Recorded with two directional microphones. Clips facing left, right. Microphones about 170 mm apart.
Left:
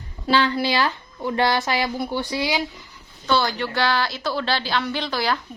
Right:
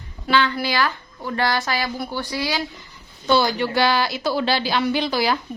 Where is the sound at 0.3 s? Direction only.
30° left (ahead or behind).